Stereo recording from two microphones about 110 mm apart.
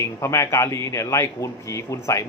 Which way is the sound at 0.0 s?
25° left (ahead or behind).